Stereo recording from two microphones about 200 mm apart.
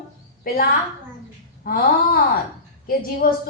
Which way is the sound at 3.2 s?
50° left (ahead or behind).